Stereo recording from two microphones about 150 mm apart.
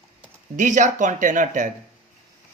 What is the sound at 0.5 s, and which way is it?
Speech, 55° right (ahead or behind).